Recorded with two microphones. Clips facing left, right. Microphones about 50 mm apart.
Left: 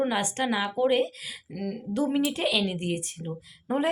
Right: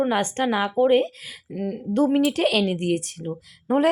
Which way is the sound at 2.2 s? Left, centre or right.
Right.